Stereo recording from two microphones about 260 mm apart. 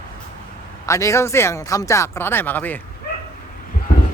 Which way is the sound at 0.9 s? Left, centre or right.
Centre.